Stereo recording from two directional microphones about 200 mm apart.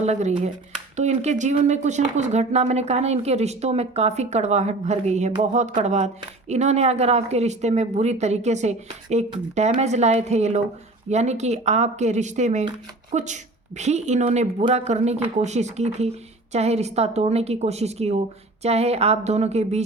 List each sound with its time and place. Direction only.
0.0 s speech: 35° right (ahead or behind)